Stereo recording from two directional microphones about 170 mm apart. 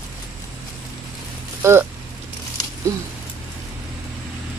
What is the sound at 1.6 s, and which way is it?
Speech, 15° right (ahead or behind).